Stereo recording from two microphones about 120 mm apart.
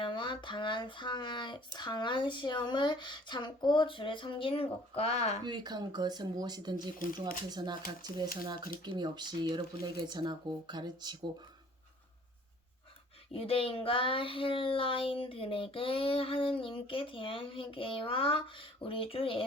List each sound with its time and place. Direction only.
0.0 s speech: 45° left (ahead or behind); by 5.4 s 65° left (ahead or behind)
5.5 s speech: 35° right (ahead or behind)
13.3 s child singing: 50° left (ahead or behind)